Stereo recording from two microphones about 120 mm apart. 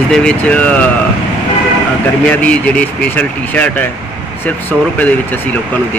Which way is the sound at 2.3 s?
10° left (ahead or behind).